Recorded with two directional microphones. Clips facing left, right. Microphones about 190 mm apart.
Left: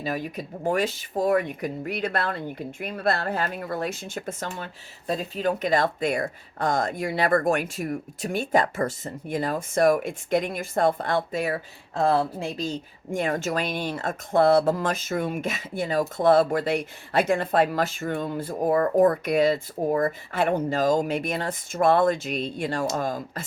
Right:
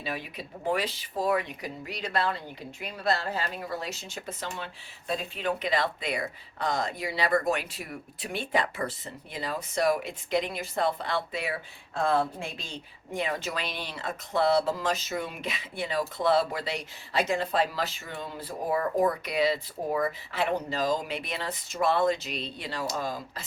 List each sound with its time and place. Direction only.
0.0 s speech: 45° left (ahead or behind)